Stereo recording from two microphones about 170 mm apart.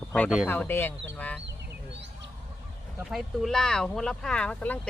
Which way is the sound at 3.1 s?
Centre (ahead or behind).